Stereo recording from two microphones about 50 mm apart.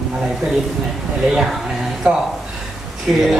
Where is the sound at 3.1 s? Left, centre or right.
Centre.